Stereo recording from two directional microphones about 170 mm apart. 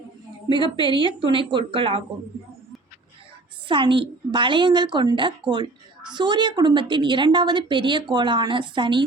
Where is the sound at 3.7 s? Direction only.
30° right (ahead or behind).